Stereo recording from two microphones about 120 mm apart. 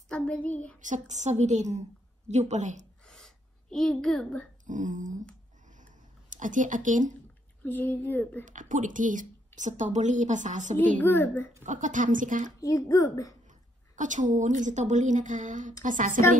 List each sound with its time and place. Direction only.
0.1 s speech: 10° left (ahead or behind)
0.7 s a woman's voice: 90° right
3.0 s a sound: 5° left (ahead or behind)
4.6 s a woman's voice: 90° right
5.7 s a sound: 90° right
7.6 s speech: 15° left (ahead or behind)
8.5 s a woman's voice: 90° right
11.0 s speech: 15° left (ahead or behind)
11.6 s a woman's voice: 90° right
12.5 s speech: 30° left (ahead or behind)
13.5 s a woman's voice: 90° right